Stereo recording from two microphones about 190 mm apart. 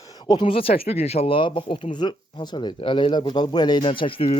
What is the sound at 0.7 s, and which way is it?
Speech, 55° left (ahead or behind).